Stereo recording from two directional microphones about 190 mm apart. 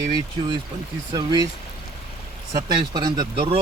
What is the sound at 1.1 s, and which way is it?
Speech, 20° right (ahead or behind).